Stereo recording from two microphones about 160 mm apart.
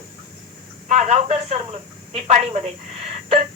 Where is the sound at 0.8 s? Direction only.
45° right (ahead or behind).